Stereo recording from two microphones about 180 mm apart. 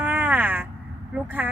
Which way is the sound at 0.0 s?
5° right (ahead or behind).